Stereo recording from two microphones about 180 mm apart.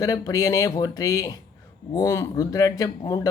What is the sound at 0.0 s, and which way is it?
Speech, 20° left (ahead or behind).